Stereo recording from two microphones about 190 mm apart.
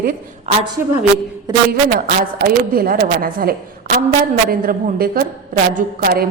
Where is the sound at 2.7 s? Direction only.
50° right (ahead or behind).